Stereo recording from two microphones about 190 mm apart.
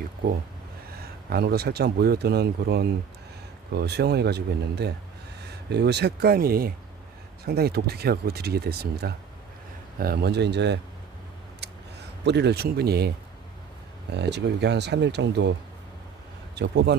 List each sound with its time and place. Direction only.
1.3 s speech: 55° right (ahead or behind)
12.3 s speech: 60° right (ahead or behind)
14.1 s speech: 65° right (ahead or behind)
16.5 s speech: 65° right (ahead or behind)